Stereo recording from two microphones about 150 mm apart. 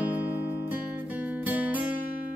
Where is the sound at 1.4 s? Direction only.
10° right (ahead or behind).